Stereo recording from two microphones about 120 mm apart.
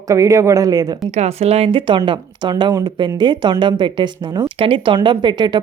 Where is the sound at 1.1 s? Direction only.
60° right (ahead or behind).